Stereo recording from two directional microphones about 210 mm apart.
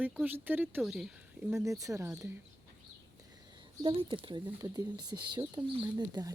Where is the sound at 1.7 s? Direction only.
15° right (ahead or behind).